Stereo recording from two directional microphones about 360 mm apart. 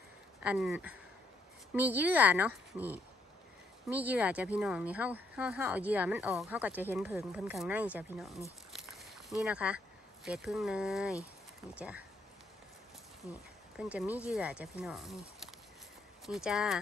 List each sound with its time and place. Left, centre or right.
0.4 s speech: centre
13.3 s speech: centre